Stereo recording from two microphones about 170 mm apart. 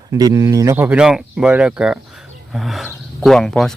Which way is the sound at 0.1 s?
20° right (ahead or behind).